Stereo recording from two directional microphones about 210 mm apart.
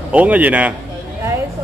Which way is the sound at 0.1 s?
5° right (ahead or behind).